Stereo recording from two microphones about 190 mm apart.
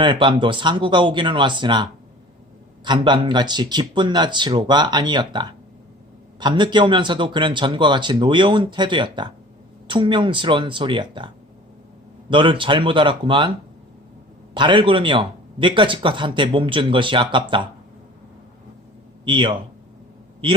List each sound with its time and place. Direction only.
0.0 s a man's voice: 25° right (ahead or behind)
12.3 s a man's voice: 25° right (ahead or behind)
14.5 s a man's voice: 25° right (ahead or behind)
19.2 s a man's voice: 25° right (ahead or behind)